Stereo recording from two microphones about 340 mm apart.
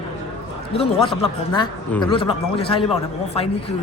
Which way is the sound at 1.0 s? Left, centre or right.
Centre.